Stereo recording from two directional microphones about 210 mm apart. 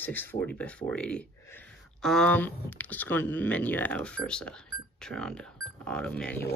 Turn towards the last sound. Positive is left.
turn(degrees=5)  # may be behind; listen again after turning